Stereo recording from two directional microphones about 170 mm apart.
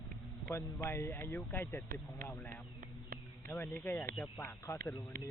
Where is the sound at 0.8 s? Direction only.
15° left (ahead or behind).